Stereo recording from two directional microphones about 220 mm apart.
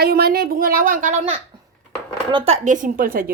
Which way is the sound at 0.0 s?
45° right (ahead or behind).